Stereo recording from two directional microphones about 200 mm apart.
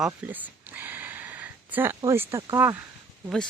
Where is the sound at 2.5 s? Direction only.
10° right (ahead or behind).